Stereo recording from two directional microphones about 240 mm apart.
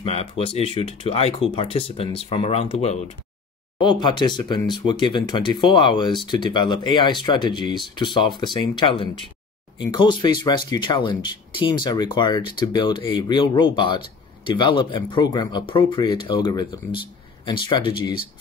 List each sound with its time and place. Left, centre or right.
0.0 s speech: left